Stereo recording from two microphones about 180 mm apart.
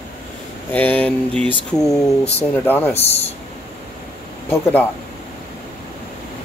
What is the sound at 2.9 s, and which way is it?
Speech, 35° left (ahead or behind).